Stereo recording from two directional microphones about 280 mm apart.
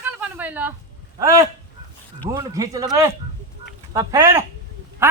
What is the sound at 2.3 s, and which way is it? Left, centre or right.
Speech, centre.